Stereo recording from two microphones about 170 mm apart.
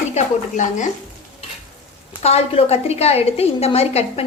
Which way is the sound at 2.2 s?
35° left (ahead or behind).